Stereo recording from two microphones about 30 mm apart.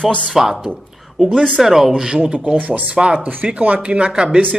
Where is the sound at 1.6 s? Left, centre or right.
Centre.